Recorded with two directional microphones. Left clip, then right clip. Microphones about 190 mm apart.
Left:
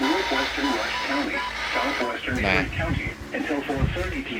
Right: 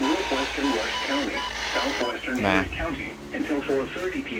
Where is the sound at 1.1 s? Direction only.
10° right (ahead or behind).